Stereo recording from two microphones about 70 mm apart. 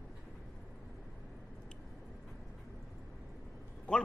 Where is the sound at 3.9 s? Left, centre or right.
Centre.